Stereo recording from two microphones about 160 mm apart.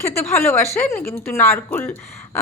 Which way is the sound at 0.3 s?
15° left (ahead or behind).